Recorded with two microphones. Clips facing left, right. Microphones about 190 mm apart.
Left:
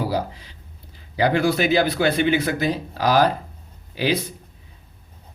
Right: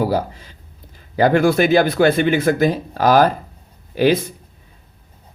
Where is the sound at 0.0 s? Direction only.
50° right (ahead or behind).